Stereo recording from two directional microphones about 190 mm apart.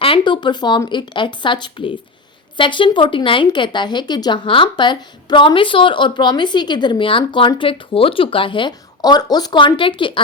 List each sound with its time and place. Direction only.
0.0 s speech: 25° left (ahead or behind)